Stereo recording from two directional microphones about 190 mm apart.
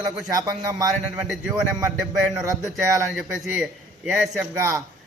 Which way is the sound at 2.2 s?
Centre (ahead or behind).